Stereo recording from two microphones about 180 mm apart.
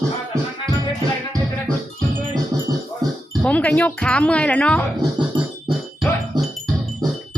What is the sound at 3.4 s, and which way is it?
Speech, 5° left (ahead or behind).